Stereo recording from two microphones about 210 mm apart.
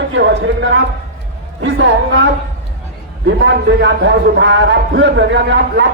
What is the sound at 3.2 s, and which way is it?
A man's voice, 55° right (ahead or behind).